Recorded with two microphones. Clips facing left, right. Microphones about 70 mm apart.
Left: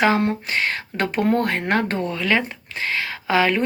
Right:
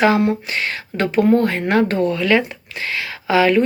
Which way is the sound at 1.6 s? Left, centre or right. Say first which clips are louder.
Right 5 dB; left.